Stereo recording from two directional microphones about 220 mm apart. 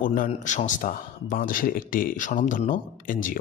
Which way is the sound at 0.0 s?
35° left (ahead or behind).